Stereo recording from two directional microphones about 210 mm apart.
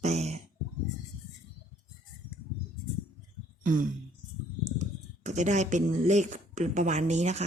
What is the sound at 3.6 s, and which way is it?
Throat clearing, 40° right (ahead or behind).